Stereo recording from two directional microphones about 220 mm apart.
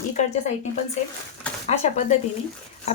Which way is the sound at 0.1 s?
30° left (ahead or behind).